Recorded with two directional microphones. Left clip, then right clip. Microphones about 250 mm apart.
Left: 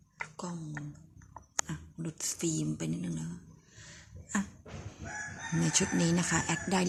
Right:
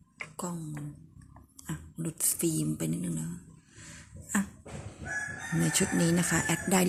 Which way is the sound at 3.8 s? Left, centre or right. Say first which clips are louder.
Right 2 dB; centre.